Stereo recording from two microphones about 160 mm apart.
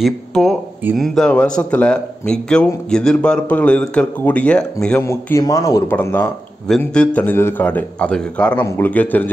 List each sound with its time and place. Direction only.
0.0 s speech: centre (ahead or behind)